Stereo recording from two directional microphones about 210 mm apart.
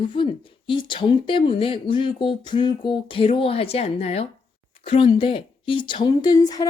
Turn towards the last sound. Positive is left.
turn(degrees=15)  # may be behind; listen again after turning